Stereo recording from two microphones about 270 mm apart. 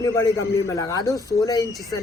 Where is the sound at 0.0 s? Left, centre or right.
Centre.